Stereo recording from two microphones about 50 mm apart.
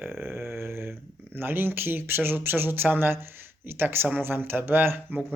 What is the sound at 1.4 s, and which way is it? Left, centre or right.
Speech, right.